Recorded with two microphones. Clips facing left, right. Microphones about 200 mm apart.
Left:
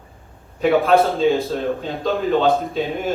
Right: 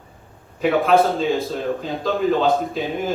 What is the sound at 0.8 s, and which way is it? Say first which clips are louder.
A man's voice: left 1 dB; centre (ahead or behind).